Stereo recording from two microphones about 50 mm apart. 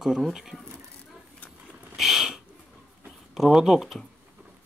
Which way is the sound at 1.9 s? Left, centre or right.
Centre.